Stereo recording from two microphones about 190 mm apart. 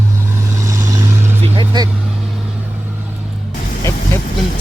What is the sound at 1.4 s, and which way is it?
Vehicle, 25° right (ahead or behind).